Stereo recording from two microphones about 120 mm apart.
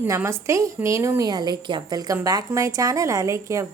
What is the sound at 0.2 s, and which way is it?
A woman's voice, 20° right (ahead or behind).